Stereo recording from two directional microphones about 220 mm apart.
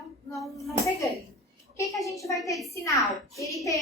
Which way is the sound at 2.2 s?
15° left (ahead or behind).